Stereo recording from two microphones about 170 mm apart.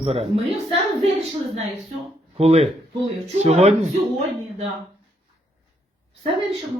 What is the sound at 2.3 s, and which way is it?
A man's voice, 35° right (ahead or behind).